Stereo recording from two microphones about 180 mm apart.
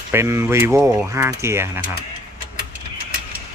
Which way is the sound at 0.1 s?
15° right (ahead or behind).